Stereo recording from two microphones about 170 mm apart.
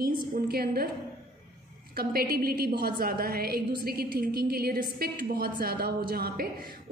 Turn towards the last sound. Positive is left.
turn(degrees=-60)  # may be behind; listen again after turning